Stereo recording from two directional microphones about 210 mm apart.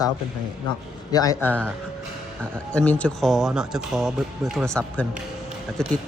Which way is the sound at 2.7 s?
5° left (ahead or behind).